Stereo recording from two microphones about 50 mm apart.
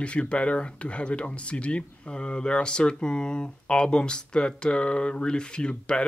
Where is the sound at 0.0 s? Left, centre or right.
Left.